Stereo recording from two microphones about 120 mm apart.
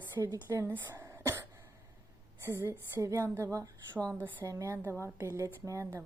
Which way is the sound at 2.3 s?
25° right (ahead or behind).